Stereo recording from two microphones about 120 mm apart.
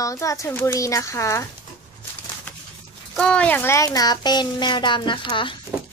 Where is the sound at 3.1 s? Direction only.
10° left (ahead or behind); by 5.5 s 45° left (ahead or behind).